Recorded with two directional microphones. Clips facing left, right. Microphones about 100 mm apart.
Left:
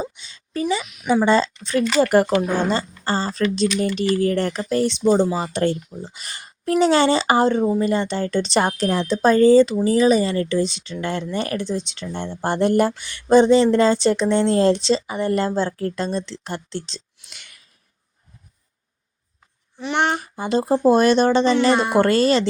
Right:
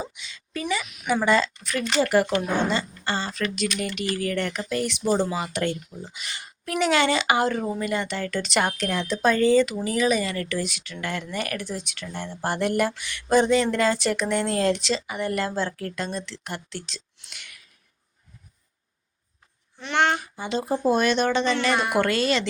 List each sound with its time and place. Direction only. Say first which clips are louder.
0.0 s speech: left 5 dB; 35° left (ahead or behind)
2.0 s speech: left 4 dB; 45° left (ahead or behind)
19.9 s speech: left 1 dB; 25° left (ahead or behind)
20.3 s speech: left 7 dB; 45° left (ahead or behind)